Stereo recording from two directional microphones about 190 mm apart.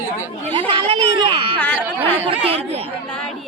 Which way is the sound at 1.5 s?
5° left (ahead or behind).